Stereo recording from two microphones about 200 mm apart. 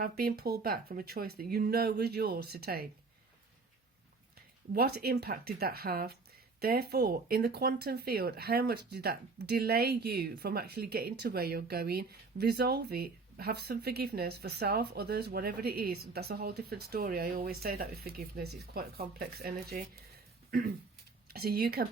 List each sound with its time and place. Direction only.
0.0 s speech: 50° right (ahead or behind)
4.7 s speech: 50° right (ahead or behind)
21.2 s speech: 50° right (ahead or behind)